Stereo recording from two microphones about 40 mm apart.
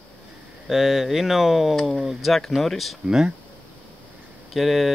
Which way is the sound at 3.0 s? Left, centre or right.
Centre.